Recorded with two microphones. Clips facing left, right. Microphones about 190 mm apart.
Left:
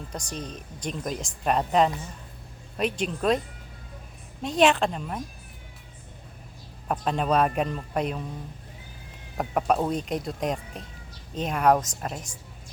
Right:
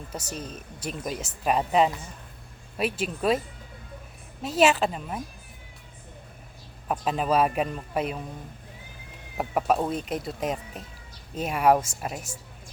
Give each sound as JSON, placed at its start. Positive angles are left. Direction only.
{"t": 0.1, "sound": "speech", "side_deg": -5}
{"t": 4.4, "sound": "speech", "side_deg": -5}
{"t": 6.8, "sound": "speech", "side_deg": -5}
{"t": 9.4, "sound": "speech", "side_deg": 0}